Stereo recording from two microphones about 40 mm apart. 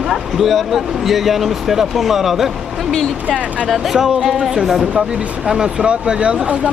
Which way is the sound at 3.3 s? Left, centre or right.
Right.